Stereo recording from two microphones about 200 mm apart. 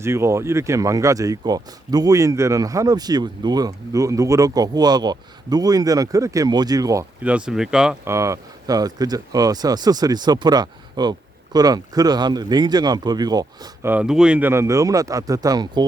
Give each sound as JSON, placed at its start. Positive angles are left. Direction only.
{"t": 0.0, "sound": "speech", "side_deg": -15}
{"t": 8.1, "sound": "speech", "side_deg": -15}
{"t": 13.9, "sound": "speech", "side_deg": -5}